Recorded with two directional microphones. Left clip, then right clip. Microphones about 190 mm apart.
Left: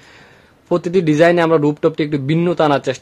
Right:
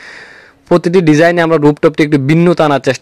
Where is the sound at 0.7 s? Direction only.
35° right (ahead or behind).